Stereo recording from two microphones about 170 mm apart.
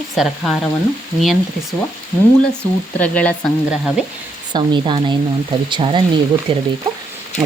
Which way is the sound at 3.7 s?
5° right (ahead or behind).